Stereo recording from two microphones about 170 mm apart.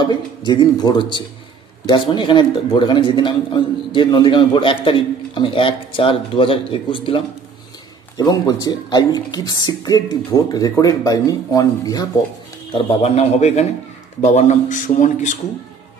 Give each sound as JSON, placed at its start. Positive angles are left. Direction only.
{"t": 0.0, "sound": "a man's voice", "side_deg": 25}
{"t": 12.7, "sound": "a man's voice", "side_deg": 35}